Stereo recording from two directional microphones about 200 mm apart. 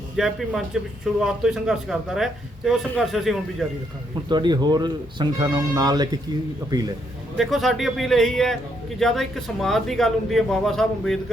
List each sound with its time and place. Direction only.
0.2 s a man's voice: centre (ahead or behind)
4.3 s speech: 20° right (ahead or behind)
7.3 s a man's voice: centre (ahead or behind)